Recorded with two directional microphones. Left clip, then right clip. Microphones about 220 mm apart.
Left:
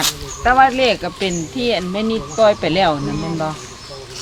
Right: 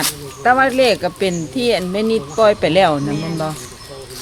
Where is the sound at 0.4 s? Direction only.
45° right (ahead or behind).